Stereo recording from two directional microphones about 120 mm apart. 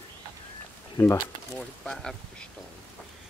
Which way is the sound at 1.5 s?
5° left (ahead or behind).